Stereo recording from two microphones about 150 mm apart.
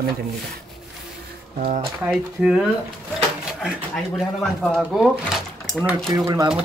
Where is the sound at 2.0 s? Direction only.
10° right (ahead or behind).